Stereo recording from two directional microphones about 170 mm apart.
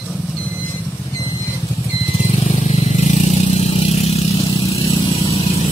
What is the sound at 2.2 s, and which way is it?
Vehicle, 40° left (ahead or behind).